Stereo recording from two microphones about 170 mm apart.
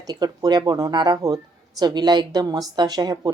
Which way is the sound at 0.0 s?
25° right (ahead or behind).